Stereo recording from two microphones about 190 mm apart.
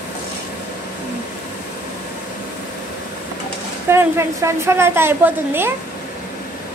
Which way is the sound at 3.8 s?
15° right (ahead or behind).